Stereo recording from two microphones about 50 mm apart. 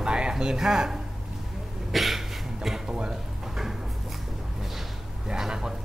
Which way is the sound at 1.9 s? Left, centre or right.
Centre.